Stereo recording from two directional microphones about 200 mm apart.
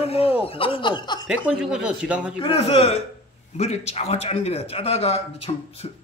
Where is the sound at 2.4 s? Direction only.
30° left (ahead or behind).